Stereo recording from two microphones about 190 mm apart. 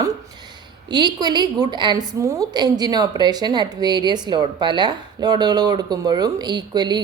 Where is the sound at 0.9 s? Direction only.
25° right (ahead or behind).